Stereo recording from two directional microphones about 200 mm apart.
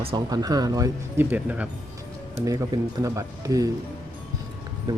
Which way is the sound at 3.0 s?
15° right (ahead or behind).